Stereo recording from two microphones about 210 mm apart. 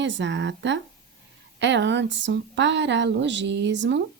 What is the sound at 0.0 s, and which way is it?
Speech, 60° right (ahead or behind).